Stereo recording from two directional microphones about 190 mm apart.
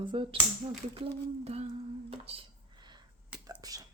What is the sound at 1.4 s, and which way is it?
Humming, 35° right (ahead or behind).